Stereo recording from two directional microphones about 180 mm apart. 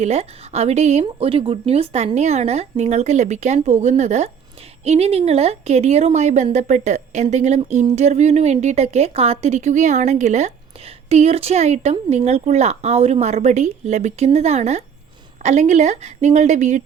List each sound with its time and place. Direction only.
0.0 s a woman's voice: 35° right (ahead or behind)